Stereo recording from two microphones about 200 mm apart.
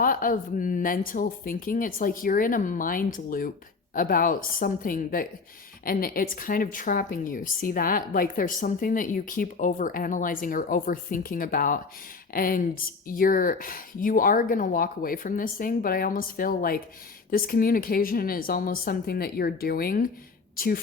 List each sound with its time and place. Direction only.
0.0 s a woman's voice: 45° left (ahead or behind)